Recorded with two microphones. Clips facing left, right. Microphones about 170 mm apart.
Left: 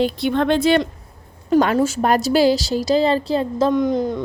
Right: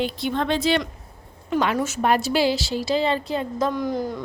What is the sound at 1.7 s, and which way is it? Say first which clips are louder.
A woman's voice: left 4 dB; 30° left (ahead or behind).